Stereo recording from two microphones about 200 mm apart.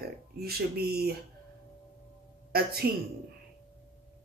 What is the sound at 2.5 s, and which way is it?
Speech, 50° right (ahead or behind).